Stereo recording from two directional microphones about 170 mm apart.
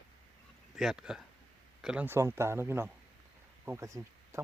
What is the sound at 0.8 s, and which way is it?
Speech, 5° right (ahead or behind).